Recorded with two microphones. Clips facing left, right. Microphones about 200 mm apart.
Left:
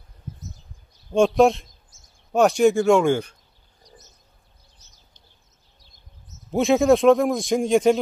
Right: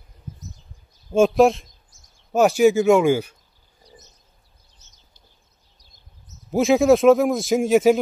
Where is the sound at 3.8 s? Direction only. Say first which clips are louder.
Right 2 dB; 30° right (ahead or behind).